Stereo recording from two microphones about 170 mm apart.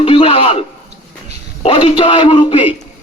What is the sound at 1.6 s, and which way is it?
A man's voice, 35° left (ahead or behind).